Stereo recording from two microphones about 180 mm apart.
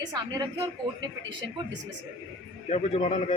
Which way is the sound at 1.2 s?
90° right.